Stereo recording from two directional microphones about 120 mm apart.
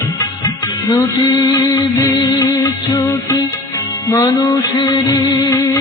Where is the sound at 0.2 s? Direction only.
30° left (ahead or behind).